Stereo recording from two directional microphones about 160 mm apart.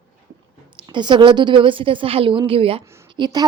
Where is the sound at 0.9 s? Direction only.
30° right (ahead or behind).